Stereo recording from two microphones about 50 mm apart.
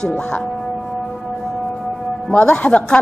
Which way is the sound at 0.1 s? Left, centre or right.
Left.